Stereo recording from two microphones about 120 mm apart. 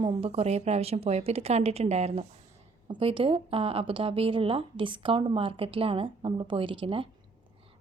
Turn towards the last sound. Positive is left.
turn(degrees=-45)  # may be behind; listen again after turning